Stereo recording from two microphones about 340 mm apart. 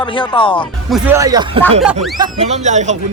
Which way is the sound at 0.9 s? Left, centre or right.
Centre.